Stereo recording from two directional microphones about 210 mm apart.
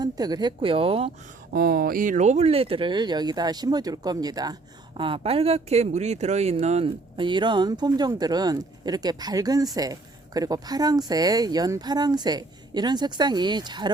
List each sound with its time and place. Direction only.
0.0 s speech: 20° right (ahead or behind)
1.5 s speech: 45° right (ahead or behind); by 13.9 s 20° right (ahead or behind)